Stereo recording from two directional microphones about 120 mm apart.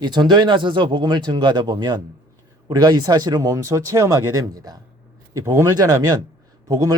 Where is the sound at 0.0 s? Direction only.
35° right (ahead or behind).